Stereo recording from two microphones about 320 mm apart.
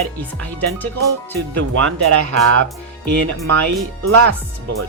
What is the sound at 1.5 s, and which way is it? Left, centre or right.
Speech, right.